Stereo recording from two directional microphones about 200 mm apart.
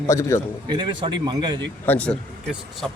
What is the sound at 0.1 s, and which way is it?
Speech, 15° left (ahead or behind).